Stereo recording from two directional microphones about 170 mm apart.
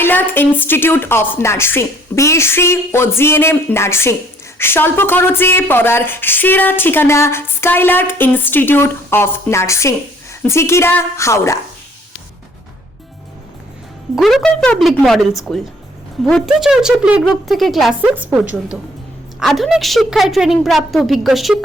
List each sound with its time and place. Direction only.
0.0 s speech: 10° left (ahead or behind)
14.2 s a woman's voice: centre (ahead or behind)